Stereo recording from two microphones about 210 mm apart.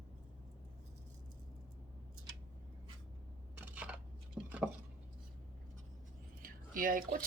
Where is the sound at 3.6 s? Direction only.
10° right (ahead or behind).